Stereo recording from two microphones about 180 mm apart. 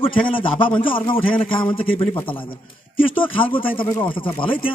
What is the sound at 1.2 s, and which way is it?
Speech, 10° left (ahead or behind).